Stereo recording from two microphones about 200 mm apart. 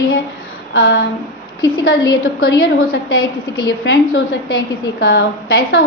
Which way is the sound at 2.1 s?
60° left (ahead or behind).